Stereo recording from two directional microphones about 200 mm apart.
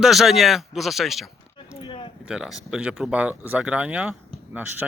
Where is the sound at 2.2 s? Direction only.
5° right (ahead or behind).